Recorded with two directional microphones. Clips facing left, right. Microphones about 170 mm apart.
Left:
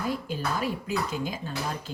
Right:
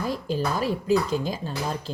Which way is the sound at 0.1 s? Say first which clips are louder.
Right 4 dB; 35° right (ahead or behind).